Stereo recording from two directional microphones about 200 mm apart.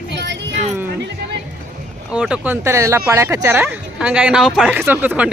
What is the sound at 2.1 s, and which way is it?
Speech, 5° right (ahead or behind).